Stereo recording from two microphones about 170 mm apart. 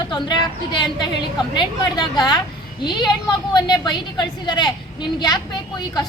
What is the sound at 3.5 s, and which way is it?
A woman's voice, 25° left (ahead or behind).